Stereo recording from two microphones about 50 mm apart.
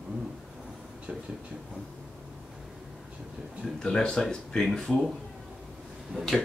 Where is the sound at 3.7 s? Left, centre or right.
Centre.